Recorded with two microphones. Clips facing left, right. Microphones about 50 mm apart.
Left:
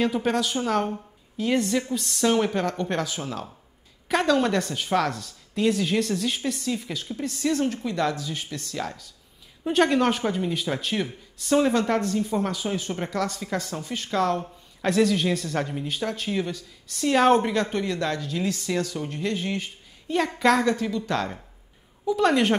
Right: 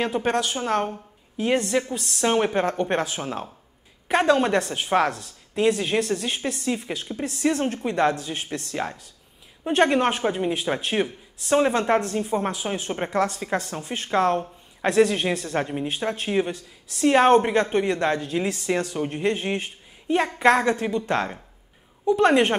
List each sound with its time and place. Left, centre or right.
0.0 s a woman's voice: centre
2.2 s speech: right
4.1 s speech: right
5.5 s speech: centre
6.0 s speech: right
22.1 s speech: right